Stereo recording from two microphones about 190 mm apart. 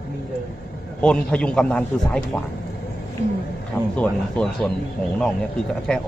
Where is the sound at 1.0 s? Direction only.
5° left (ahead or behind).